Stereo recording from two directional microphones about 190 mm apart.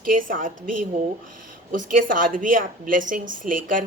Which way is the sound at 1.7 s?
45° right (ahead or behind).